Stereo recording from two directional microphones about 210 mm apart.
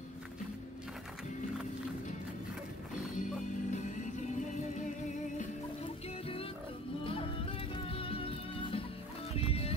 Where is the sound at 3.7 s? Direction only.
35° left (ahead or behind).